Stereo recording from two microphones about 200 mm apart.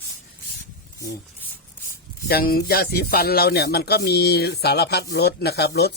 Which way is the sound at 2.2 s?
50° left (ahead or behind).